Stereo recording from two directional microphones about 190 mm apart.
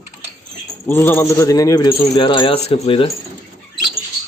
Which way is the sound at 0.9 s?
10° left (ahead or behind).